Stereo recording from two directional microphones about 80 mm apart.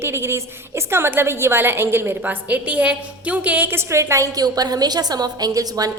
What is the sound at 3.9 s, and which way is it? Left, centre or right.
A woman's voice, right.